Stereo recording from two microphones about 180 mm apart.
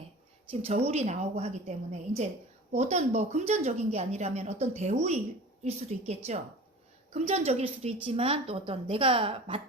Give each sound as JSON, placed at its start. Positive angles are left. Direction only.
{"t": 0.6, "sound": "a woman's voice", "side_deg": -35}